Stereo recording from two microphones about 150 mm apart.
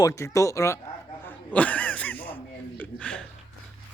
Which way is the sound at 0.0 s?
20° left (ahead or behind).